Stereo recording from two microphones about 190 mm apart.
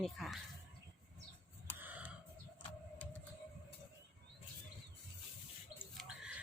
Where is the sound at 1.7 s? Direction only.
10° right (ahead or behind).